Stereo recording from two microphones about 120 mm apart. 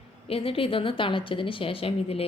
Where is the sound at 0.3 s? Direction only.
50° left (ahead or behind).